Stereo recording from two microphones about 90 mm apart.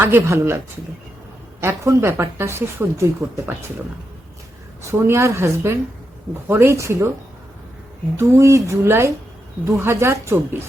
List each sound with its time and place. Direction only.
0.0 s speech: 25° right (ahead or behind)
1.6 s speech: 30° right (ahead or behind)
4.8 s speech: 30° right (ahead or behind)
8.1 s speech: 30° right (ahead or behind)